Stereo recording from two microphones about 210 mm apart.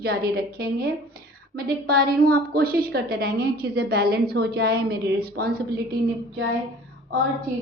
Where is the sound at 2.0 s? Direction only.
45° right (ahead or behind).